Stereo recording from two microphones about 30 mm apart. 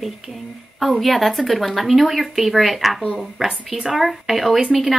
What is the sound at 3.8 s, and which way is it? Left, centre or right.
Speech, centre.